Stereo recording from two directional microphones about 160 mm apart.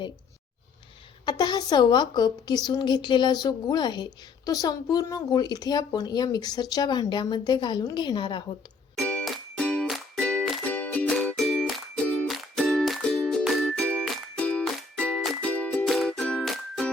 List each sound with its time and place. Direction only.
1.2 s a woman's voice: 25° left (ahead or behind)
9.0 s music: 5° left (ahead or behind)